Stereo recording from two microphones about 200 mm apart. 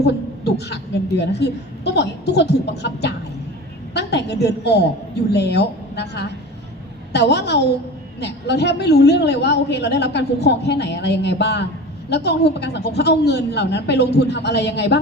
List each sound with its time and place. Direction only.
1.2 s a woman's voice: 60° left (ahead or behind)